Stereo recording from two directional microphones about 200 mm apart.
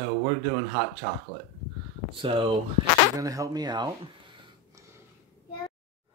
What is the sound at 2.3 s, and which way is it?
Speech, 25° right (ahead or behind).